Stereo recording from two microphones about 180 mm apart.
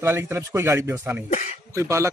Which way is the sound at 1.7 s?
15° right (ahead or behind).